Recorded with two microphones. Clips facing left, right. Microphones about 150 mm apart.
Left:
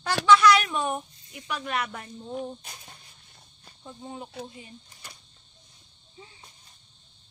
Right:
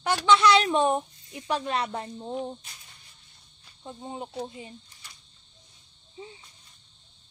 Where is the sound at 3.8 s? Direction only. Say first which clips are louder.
Right 2 dB; 25° right (ahead or behind).